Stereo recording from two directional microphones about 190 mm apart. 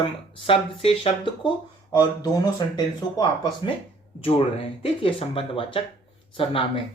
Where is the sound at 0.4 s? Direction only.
30° left (ahead or behind).